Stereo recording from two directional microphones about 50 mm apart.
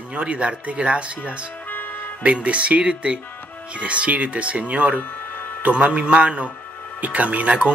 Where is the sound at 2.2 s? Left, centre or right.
Right.